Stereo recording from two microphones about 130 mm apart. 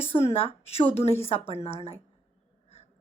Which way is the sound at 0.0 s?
50° left (ahead or behind).